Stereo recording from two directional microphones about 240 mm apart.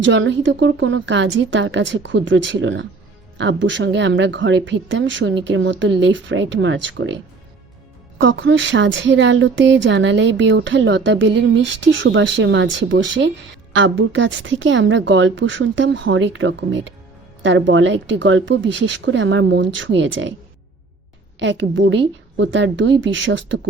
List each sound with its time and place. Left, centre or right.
0.0 s speech: right
8.2 s speech: right
21.3 s speech: right